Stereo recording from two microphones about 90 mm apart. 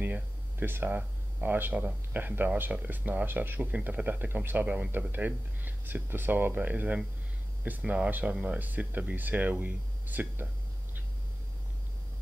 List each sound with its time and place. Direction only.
0.0 s speech: 20° right (ahead or behind)